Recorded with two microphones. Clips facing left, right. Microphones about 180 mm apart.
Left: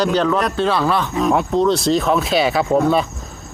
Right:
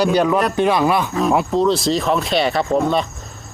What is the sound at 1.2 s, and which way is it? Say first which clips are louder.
Speech: left 1 dB; centre (ahead or behind).